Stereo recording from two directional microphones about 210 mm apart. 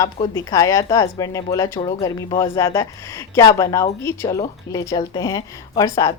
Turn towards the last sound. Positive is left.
turn(degrees=15)  # may be behind; listen again after turning